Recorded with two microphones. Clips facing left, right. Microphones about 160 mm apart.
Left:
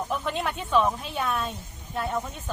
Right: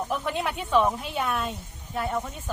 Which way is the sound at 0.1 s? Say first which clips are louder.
Even; 5° right (ahead or behind).